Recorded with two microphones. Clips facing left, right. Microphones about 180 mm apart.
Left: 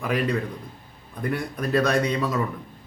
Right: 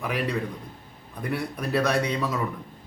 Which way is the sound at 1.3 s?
10° right (ahead or behind).